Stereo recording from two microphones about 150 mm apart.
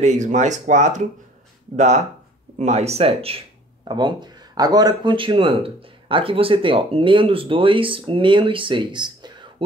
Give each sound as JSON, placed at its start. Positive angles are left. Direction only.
{"t": 0.0, "sound": "speech", "side_deg": -50}